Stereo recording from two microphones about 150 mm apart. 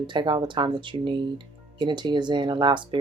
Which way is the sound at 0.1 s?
30° right (ahead or behind).